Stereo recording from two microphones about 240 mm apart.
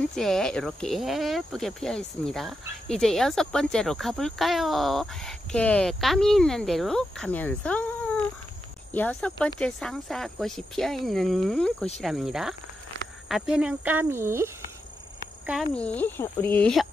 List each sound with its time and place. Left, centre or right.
0.1 s speech: centre
15.4 s speech: centre